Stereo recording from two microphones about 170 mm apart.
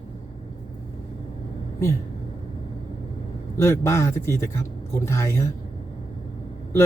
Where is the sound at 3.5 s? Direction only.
15° left (ahead or behind).